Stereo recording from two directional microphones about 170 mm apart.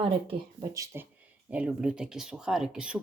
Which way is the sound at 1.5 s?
5° right (ahead or behind).